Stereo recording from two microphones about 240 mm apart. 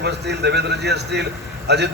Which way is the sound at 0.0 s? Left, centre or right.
Right.